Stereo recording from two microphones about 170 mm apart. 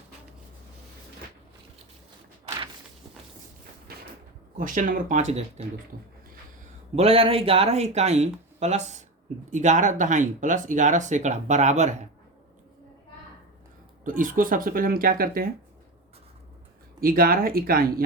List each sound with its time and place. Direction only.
3.9 s a sound: 65° right (ahead or behind)
4.5 s speech: 50° right (ahead or behind)
5.9 s speech: 60° right (ahead or behind)
6.9 s speech: 35° right (ahead or behind)
14.0 s speech: 55° right (ahead or behind)
17.0 s speech: 60° right (ahead or behind)